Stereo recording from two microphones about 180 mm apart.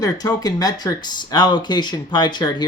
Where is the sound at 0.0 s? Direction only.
20° left (ahead or behind).